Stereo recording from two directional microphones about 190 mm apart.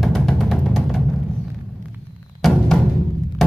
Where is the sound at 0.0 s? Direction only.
Centre (ahead or behind).